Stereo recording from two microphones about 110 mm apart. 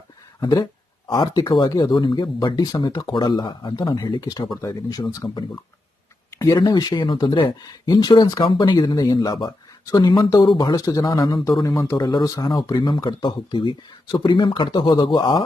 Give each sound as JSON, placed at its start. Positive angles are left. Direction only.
{"t": 0.3, "sound": "speech", "side_deg": 35}
{"t": 1.0, "sound": "speech", "side_deg": 50}
{"t": 6.3, "sound": "a sound", "side_deg": 30}
{"t": 6.6, "sound": "a man's voice", "side_deg": 40}
{"t": 11.9, "sound": "speech", "side_deg": 40}